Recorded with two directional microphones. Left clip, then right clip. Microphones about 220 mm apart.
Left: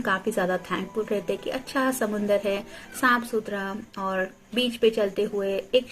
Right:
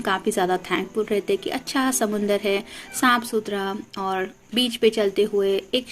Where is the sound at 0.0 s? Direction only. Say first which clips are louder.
Right 3 dB; 45° right (ahead or behind).